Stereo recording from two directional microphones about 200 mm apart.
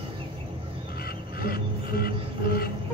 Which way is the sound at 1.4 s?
50° left (ahead or behind).